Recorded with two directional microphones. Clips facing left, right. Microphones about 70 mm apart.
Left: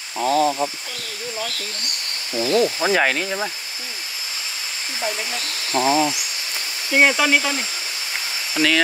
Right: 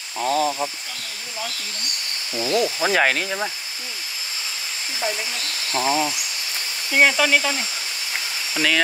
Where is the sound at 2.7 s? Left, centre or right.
Centre.